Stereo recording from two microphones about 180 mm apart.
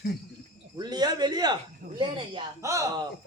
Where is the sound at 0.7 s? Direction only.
25° right (ahead or behind).